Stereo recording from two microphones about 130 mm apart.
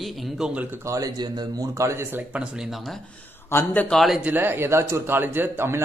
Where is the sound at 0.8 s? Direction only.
25° right (ahead or behind); by 2.9 s 5° right (ahead or behind).